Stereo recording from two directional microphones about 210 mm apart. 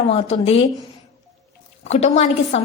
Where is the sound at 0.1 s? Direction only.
30° left (ahead or behind).